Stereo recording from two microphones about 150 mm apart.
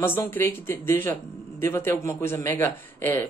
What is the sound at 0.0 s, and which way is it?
Speech, 15° left (ahead or behind).